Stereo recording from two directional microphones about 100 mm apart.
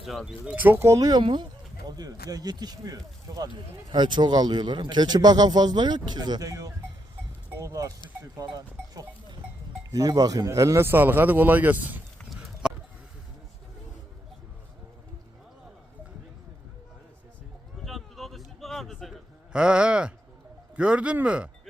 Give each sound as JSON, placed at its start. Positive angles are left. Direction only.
{"t": 0.0, "sound": "speech", "side_deg": 0}
{"t": 0.4, "sound": "speech", "side_deg": -15}
{"t": 1.2, "sound": "a man's voice", "side_deg": -50}
{"t": 9.9, "sound": "speech", "side_deg": -40}
{"t": 12.6, "sound": "a sound", "side_deg": -10}
{"t": 17.8, "sound": "a sound", "side_deg": 0}
{"t": 19.5, "sound": "speech", "side_deg": -10}